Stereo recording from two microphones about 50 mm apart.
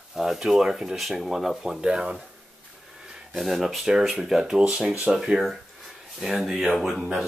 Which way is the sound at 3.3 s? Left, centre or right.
Centre.